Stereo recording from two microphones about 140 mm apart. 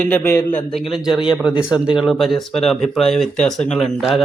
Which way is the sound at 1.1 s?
35° left (ahead or behind).